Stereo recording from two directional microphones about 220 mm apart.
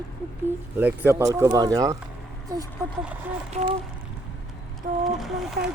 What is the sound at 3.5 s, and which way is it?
Speech, 30° right (ahead or behind).